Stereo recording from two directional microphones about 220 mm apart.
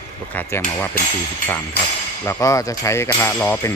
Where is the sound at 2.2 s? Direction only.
15° left (ahead or behind).